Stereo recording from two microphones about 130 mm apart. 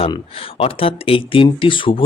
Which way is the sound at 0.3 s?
45° left (ahead or behind).